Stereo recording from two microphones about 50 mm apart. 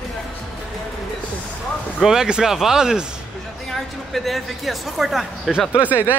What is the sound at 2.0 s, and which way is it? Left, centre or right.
Speech, centre.